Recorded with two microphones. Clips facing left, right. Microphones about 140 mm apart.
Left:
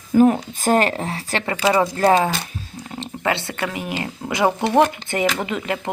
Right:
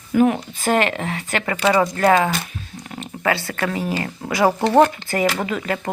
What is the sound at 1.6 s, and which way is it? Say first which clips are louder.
Speech: even; 10° left (ahead or behind).